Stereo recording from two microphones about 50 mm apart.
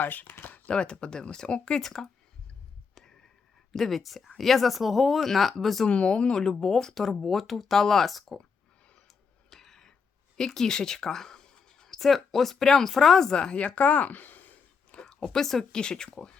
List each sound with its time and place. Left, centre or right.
0.0 s speech: left
0.4 s a sound: left
0.7 s speech: centre
2.9 s a sound: centre
3.7 s speech: centre
5.9 s speech: centre
9.5 s a sound: centre
10.3 s speech: centre
13.3 s speech: centre; by 14.4 s left
14.9 s speech: centre